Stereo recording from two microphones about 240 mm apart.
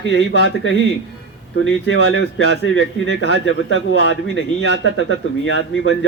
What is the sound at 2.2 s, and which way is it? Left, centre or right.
Speech, left.